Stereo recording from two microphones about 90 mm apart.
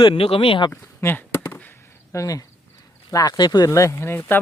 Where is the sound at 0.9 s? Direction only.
25° left (ahead or behind).